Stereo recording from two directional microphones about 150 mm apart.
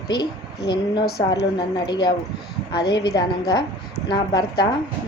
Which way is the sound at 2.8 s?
90° left.